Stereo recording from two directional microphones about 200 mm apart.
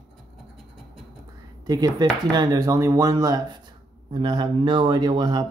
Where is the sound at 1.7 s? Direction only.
20° right (ahead or behind).